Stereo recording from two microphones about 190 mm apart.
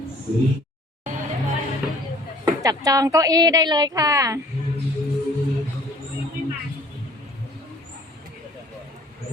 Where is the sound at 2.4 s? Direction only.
20° right (ahead or behind).